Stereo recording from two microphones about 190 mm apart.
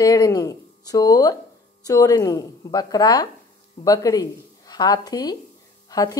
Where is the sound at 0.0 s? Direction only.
20° left (ahead or behind).